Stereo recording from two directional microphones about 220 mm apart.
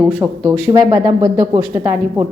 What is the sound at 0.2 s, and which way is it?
Speech, 10° right (ahead or behind).